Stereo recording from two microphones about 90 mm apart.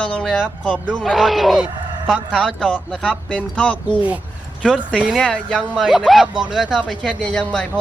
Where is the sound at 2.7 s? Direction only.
15° left (ahead or behind).